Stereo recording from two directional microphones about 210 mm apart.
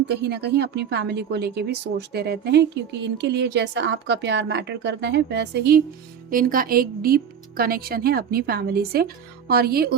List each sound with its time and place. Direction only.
0.1 s a woman's voice: 50° right (ahead or behind)